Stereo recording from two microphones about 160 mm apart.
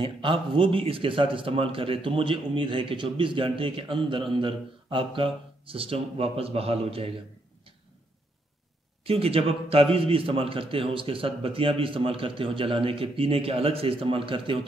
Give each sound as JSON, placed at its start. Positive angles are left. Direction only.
{"t": 0.0, "sound": "a man's voice", "side_deg": -30}
{"t": 9.0, "sound": "a man's voice", "side_deg": -35}